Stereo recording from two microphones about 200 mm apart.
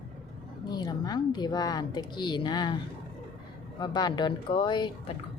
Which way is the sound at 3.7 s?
20° left (ahead or behind).